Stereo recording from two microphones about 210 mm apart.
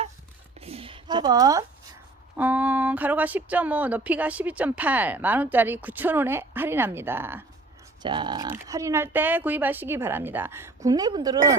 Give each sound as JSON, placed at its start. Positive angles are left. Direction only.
{"t": 0.6, "sound": "a sound", "side_deg": -30}
{"t": 2.3, "sound": "speech", "side_deg": -10}
{"t": 8.0, "sound": "speech", "side_deg": -20}